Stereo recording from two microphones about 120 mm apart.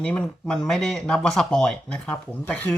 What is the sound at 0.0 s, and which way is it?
Speech, 10° left (ahead or behind).